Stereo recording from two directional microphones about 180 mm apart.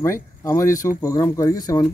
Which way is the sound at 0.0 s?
15° left (ahead or behind).